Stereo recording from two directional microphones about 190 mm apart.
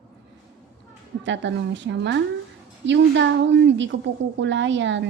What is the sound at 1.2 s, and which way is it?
A woman's voice, 70° right (ahead or behind).